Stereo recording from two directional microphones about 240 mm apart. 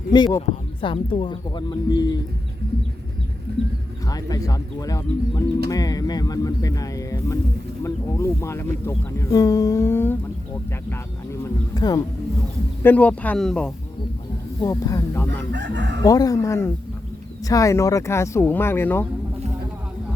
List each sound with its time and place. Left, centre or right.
0.3 s speech: left
4.1 s speech: centre
11.7 s speech: centre
14.6 s speech: centre
15.5 s chicken: right
16.0 s speech: centre